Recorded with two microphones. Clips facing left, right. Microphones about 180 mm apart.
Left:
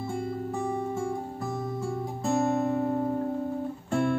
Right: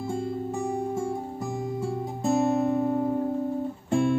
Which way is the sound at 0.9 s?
15° right (ahead or behind).